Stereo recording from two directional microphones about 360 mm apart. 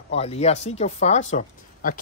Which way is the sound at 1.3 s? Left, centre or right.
Left.